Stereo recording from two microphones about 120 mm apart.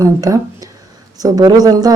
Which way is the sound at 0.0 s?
30° right (ahead or behind).